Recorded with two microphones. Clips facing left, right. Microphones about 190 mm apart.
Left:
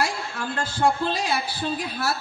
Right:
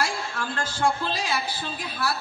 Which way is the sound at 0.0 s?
20° left (ahead or behind).